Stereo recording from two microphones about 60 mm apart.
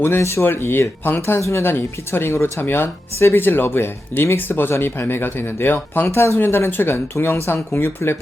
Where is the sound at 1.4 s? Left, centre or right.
Left.